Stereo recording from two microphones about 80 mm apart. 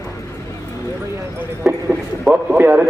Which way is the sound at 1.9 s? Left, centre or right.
Centre.